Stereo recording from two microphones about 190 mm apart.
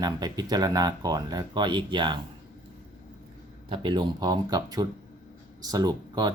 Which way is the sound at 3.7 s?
25° right (ahead or behind).